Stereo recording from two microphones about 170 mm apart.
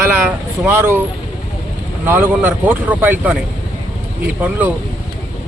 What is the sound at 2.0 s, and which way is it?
Speech, 10° right (ahead or behind).